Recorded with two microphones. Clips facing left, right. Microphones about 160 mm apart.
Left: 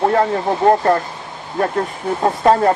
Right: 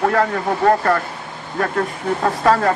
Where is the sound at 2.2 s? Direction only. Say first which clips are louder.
Left 3 dB; 25° left (ahead or behind).